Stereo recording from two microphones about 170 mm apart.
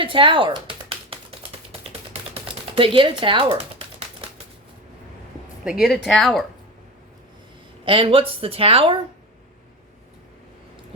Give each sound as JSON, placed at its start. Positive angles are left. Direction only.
{"t": 0.0, "sound": "speech", "side_deg": -30}
{"t": 0.9, "sound": "typing", "side_deg": -30}
{"t": 1.9, "sound": "typewriter", "side_deg": -35}
{"t": 5.6, "sound": "speech", "side_deg": 0}
{"t": 7.9, "sound": "speech", "side_deg": -30}